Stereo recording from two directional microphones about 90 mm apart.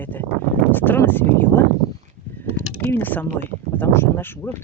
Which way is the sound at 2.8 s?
20° left (ahead or behind).